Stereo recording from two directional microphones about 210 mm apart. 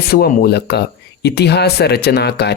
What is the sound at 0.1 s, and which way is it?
Speech, 45° left (ahead or behind).